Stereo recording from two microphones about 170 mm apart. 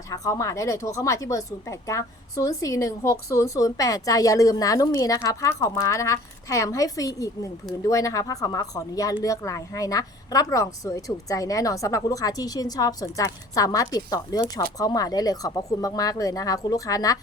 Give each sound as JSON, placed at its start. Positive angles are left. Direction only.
{"t": 0.1, "sound": "a woman's voice", "side_deg": 20}